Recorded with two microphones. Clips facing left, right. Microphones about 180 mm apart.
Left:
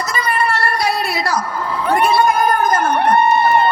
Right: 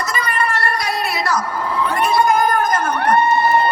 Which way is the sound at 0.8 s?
30° left (ahead or behind).